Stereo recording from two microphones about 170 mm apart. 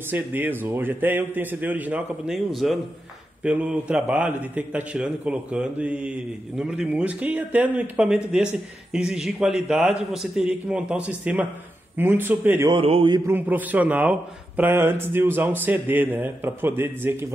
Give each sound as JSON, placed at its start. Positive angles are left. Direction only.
{"t": 0.1, "sound": "a man's voice", "side_deg": -10}
{"t": 12.6, "sound": "a man's voice", "side_deg": -35}
{"t": 13.2, "sound": "a man's voice", "side_deg": -10}